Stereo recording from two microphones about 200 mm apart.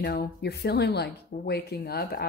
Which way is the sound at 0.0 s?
50° left (ahead or behind).